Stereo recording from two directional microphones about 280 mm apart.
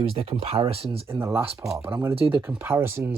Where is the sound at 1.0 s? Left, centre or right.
Centre.